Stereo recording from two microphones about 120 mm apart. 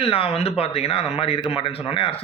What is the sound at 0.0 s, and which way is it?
A man's voice, 50° left (ahead or behind).